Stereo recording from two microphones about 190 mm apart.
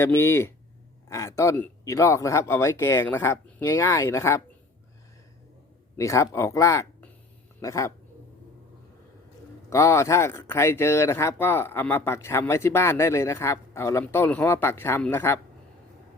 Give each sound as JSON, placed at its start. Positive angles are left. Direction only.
{"t": 0.0, "sound": "speech", "side_deg": 10}
{"t": 6.0, "sound": "speech", "side_deg": 15}
{"t": 9.6, "sound": "speech", "side_deg": 15}